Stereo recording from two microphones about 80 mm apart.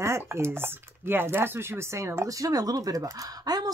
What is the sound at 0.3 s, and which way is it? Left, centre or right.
Speech, right.